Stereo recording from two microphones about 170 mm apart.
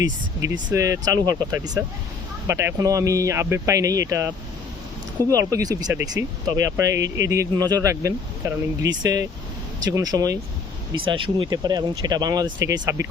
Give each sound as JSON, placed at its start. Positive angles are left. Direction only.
{"t": 0.4, "sound": "speech", "side_deg": -20}
{"t": 5.3, "sound": "speech", "side_deg": -20}